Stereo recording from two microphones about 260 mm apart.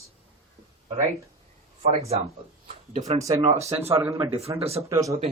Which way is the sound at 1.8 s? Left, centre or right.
Right.